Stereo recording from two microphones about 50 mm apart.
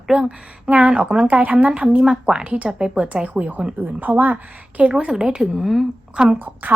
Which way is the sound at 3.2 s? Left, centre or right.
Right.